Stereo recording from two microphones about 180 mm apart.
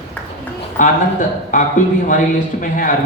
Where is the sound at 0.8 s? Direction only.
45° left (ahead or behind).